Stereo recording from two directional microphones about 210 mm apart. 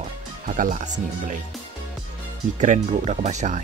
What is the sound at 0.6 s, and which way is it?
Speech, 35° right (ahead or behind).